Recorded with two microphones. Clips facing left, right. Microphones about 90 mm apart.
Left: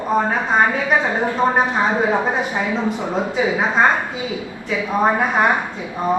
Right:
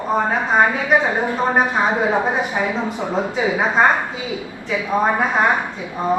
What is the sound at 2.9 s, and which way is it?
Speech, 20° left (ahead or behind).